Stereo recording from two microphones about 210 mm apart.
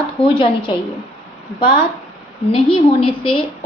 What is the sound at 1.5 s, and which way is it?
A woman's voice, 25° left (ahead or behind).